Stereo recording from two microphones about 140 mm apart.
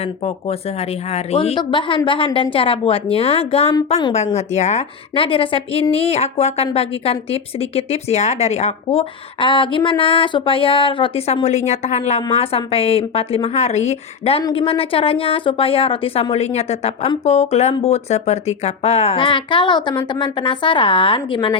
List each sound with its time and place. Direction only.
0.0 s speech: 45° left (ahead or behind)
1.5 s speech: 35° left (ahead or behind)
4.4 s speech: 55° left (ahead or behind); by 21.5 s 35° left (ahead or behind)